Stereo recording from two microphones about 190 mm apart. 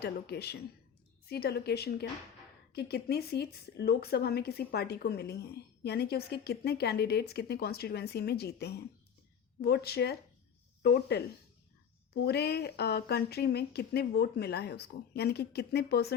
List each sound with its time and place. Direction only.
0.0 s a woman's voice: 60° left (ahead or behind)
12.1 s a woman's voice: 60° left (ahead or behind)